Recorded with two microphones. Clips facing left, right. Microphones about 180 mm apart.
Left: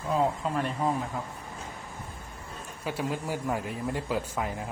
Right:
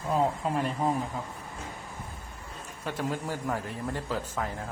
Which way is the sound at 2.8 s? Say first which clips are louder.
Even; 10° left (ahead or behind).